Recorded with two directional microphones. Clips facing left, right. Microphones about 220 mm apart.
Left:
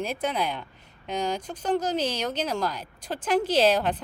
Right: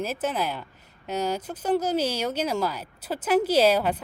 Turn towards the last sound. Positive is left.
turn(degrees=-10)  # may be behind; listen again after turning